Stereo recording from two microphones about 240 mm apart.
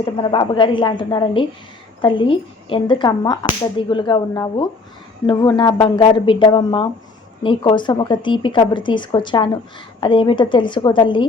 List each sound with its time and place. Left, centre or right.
0.0 s speech: centre